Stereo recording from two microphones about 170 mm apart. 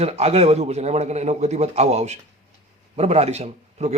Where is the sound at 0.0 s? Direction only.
35° right (ahead or behind).